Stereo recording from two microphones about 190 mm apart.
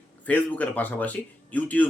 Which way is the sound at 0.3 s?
10° left (ahead or behind).